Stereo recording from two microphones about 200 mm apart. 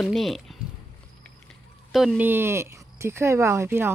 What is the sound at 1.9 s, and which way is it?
Speech, centre (ahead or behind).